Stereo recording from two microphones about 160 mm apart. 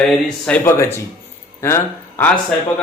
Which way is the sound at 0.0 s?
5° left (ahead or behind).